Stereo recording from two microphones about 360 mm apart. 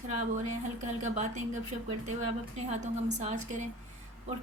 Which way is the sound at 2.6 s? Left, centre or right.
Centre.